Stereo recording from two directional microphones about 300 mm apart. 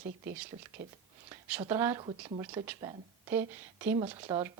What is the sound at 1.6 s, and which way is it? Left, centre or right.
Speech, centre.